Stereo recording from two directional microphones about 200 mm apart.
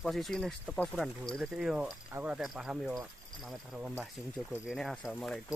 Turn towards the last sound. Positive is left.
turn(degrees=0)  # may be behind; listen again after turning